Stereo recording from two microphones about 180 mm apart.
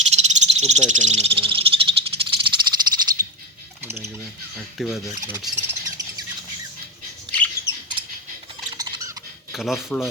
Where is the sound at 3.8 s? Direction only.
15° right (ahead or behind).